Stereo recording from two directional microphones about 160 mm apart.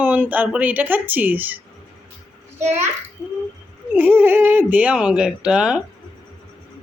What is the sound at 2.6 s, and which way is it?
Speech, 45° right (ahead or behind).